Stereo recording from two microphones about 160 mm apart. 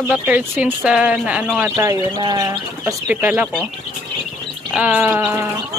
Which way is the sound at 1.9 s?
25° right (ahead or behind).